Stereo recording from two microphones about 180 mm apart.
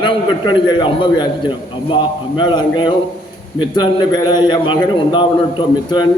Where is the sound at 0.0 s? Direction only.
25° left (ahead or behind).